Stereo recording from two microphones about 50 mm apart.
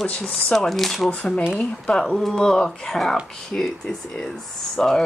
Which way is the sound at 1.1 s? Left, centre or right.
Left.